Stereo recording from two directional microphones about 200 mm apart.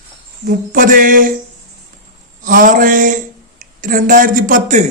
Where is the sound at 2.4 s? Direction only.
40° right (ahead or behind).